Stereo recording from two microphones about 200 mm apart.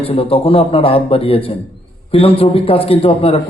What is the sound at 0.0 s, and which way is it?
Speech, 30° left (ahead or behind).